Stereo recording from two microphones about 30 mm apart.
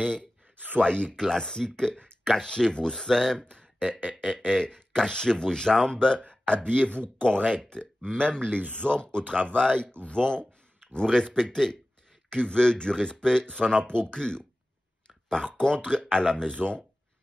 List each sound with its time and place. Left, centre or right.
0.0 s speech: centre
0.7 s speech: left
1.1 s speech: centre
11.1 s speech: left
15.0 s a sound: left
15.5 s speech: left